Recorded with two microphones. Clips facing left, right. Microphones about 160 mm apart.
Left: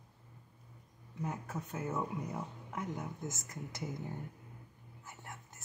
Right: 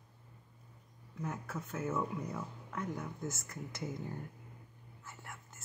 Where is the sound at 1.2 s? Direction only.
15° left (ahead or behind).